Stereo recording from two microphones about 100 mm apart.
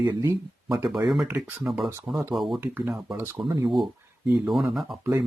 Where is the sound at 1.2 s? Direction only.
25° right (ahead or behind).